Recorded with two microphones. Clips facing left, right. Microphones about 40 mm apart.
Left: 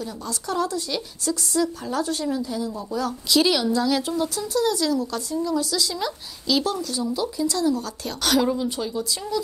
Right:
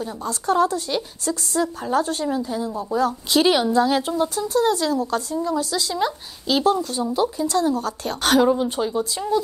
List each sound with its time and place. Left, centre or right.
0.0 s speech: right